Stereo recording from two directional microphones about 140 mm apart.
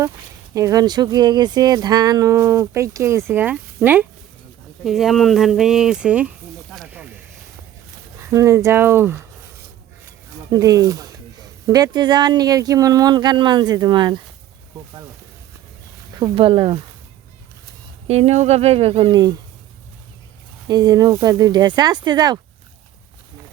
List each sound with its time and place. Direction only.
0.5 s speech: 25° right (ahead or behind)
6.8 s snake: 10° right (ahead or behind)
8.2 s speech: 20° right (ahead or behind)
10.5 s speech: 25° right (ahead or behind)
16.3 s speech: 40° right (ahead or behind)
18.1 s speech: 50° right (ahead or behind)
20.7 s speech: 30° right (ahead or behind)